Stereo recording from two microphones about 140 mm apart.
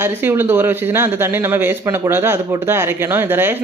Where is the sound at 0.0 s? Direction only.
15° right (ahead or behind).